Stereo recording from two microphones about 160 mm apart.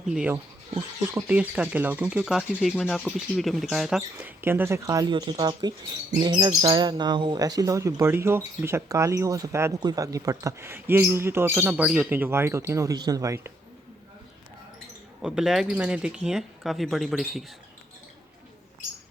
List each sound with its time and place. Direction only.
0.0 s speech: 5° right (ahead or behind)
0.8 s speech: 15° right (ahead or behind)
15.2 s speech: 5° right (ahead or behind)